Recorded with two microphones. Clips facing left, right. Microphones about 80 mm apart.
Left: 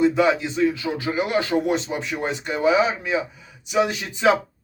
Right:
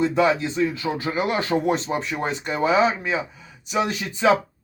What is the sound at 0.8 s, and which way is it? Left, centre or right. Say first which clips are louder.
Speech: even; right.